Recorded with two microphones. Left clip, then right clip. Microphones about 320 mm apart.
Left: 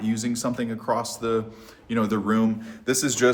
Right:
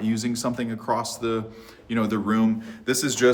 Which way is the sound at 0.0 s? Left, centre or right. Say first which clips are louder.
Right 1 dB; centre.